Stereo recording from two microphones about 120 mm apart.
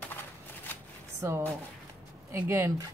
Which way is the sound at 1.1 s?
25° right (ahead or behind).